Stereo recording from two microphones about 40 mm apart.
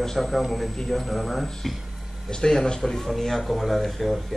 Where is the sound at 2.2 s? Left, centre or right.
Centre.